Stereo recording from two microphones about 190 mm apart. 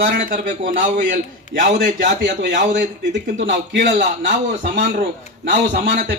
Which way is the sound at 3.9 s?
40° right (ahead or behind).